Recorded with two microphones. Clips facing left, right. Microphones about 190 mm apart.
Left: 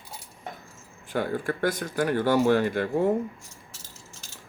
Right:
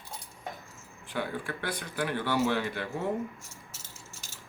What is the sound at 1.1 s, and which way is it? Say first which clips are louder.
Speech: left 7 dB; 45° left (ahead or behind).